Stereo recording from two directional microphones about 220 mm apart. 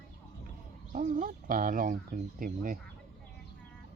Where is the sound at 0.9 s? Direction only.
35° right (ahead or behind).